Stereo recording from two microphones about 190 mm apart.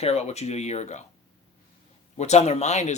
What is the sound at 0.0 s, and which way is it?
Speech, 35° left (ahead or behind).